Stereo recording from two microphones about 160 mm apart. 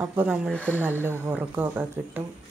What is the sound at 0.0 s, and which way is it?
Speech, 15° right (ahead or behind).